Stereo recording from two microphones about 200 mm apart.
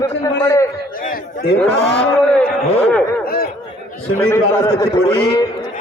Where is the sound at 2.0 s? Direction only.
5° left (ahead or behind).